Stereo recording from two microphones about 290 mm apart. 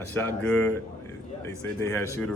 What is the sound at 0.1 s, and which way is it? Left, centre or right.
A man's voice, centre.